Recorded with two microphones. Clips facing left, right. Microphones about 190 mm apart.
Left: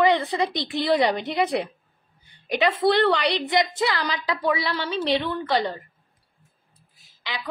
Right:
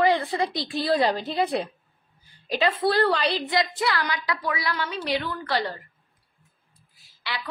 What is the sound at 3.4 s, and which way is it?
A woman's voice, 20° left (ahead or behind).